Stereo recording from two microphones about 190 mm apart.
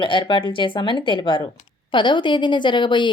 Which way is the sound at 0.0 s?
25° left (ahead or behind).